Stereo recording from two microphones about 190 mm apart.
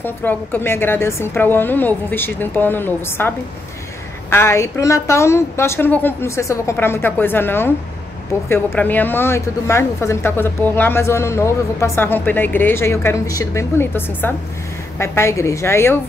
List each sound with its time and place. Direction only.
0.0 s a woman's voice: 10° left (ahead or behind)